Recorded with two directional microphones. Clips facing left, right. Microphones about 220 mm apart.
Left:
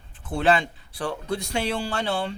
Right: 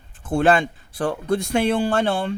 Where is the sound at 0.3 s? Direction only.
50° right (ahead or behind).